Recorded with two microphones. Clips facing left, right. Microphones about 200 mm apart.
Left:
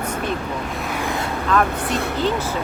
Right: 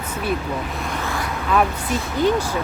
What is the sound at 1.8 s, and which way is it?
Speech, 65° left (ahead or behind).